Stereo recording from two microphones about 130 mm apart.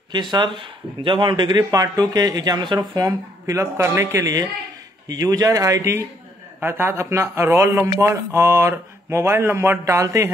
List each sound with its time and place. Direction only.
0.1 s a man's voice: 35° right (ahead or behind)